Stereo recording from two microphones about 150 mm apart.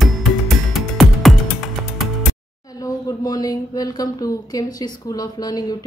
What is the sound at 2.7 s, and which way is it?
Speech, 25° left (ahead or behind).